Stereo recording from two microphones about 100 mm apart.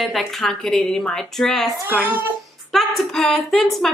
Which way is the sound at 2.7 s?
5° left (ahead or behind).